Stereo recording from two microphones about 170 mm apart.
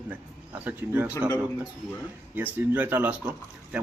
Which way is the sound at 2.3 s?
10° right (ahead or behind).